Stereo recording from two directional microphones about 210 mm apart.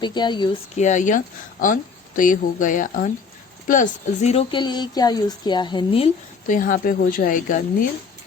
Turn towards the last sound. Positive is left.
turn(degrees=40)  # may be behind; listen again after turning